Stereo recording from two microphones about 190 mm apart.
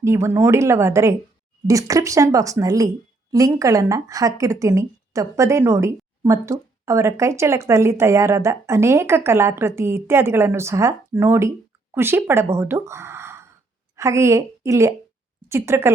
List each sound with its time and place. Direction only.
0.0 s a woman's voice: 15° right (ahead or behind)